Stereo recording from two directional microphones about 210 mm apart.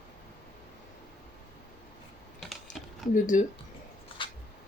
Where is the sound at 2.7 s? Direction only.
35° left (ahead or behind).